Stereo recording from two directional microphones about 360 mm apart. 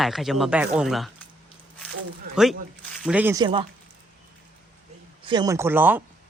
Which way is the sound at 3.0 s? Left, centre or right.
Centre.